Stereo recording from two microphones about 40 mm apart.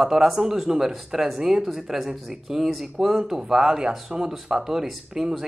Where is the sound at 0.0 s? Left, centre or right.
Centre.